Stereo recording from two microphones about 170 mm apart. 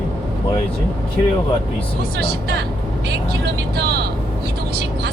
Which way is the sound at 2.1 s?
65° right (ahead or behind).